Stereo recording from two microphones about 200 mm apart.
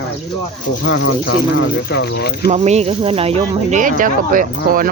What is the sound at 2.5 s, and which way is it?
Speech, 35° right (ahead or behind).